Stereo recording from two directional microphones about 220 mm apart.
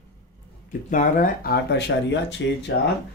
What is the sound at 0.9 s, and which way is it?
Speech, 40° left (ahead or behind).